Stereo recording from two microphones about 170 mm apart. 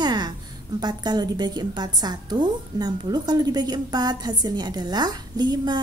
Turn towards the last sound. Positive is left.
turn(degrees=-25)  # may be behind; listen again after turning